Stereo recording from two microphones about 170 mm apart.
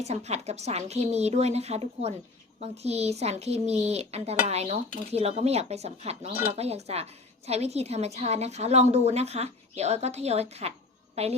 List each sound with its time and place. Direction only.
0.0 s a woman's voice: 40° right (ahead or behind)